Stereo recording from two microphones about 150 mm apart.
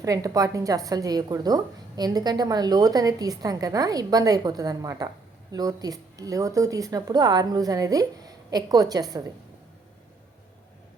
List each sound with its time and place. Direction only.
0.0 s a woman's voice: 25° right (ahead or behind)